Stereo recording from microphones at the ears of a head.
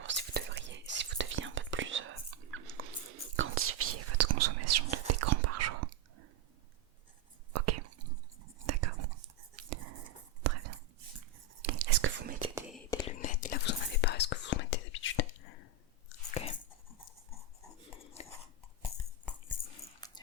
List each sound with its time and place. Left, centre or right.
0.0 s whispering: right
7.5 s whispering: right
13.1 s whispering: left
18.9 s dog: left